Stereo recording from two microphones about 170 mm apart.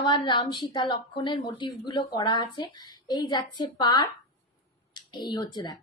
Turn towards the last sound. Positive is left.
turn(degrees=25)  # may be behind; listen again after turning